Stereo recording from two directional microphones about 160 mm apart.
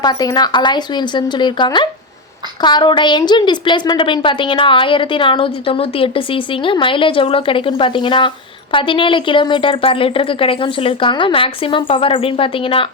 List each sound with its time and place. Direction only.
0.0 s a woman's voice: 25° left (ahead or behind)